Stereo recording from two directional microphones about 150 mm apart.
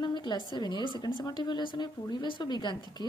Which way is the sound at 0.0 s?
30° left (ahead or behind).